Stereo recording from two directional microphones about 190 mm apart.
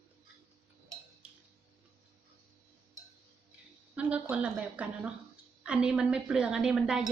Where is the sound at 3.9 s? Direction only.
5° right (ahead or behind).